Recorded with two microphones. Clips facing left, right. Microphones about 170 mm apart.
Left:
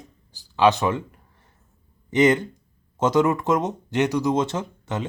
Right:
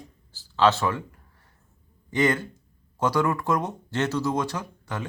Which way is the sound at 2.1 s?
20° left (ahead or behind).